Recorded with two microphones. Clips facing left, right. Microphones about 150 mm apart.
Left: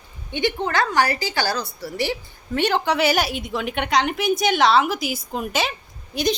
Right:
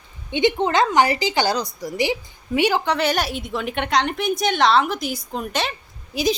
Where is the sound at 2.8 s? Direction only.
5° left (ahead or behind).